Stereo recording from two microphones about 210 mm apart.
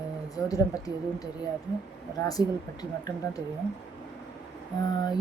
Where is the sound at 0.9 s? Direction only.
20° left (ahead or behind).